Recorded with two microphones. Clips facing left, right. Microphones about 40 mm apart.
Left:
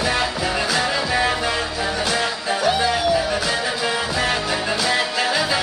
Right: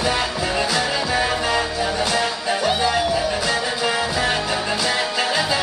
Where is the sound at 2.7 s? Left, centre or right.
Centre.